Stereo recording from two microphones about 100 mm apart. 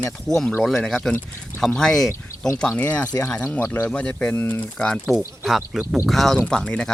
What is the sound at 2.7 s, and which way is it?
Speech, 15° left (ahead or behind).